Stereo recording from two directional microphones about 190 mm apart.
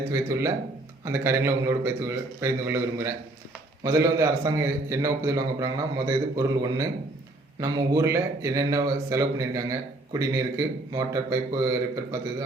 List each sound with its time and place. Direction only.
0.1 s a man's voice: 15° right (ahead or behind)